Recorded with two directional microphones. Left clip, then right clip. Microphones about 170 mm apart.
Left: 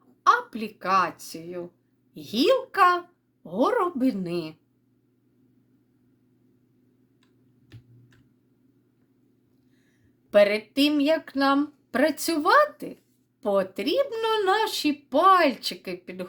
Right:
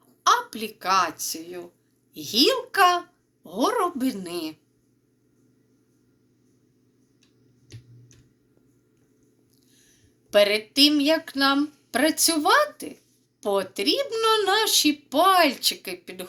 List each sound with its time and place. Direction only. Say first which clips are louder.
0.2 s speech: even; 50° left (ahead or behind)
10.3 s speech: even; 50° left (ahead or behind)